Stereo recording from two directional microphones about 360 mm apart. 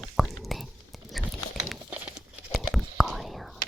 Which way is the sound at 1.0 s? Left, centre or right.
Centre.